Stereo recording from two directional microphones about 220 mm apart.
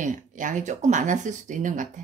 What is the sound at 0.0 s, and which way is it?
Speech, 35° right (ahead or behind).